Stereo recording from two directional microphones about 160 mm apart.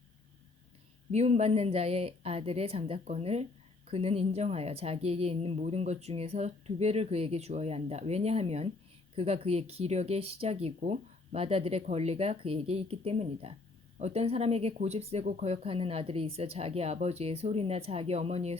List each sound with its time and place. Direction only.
1.1 s a woman's voice: 45° right (ahead or behind)